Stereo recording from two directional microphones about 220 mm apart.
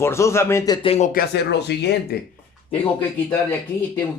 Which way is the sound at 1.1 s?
45° left (ahead or behind).